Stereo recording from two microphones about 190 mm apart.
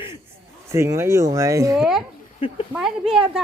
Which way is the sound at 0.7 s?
15° right (ahead or behind).